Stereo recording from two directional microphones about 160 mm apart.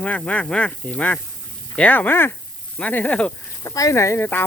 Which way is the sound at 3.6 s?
20° left (ahead or behind).